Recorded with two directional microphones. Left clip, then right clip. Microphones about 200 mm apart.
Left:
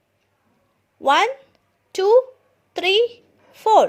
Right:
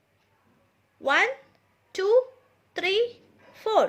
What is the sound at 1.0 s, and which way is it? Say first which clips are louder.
A woman's voice: left 6 dB; 25° left (ahead or behind).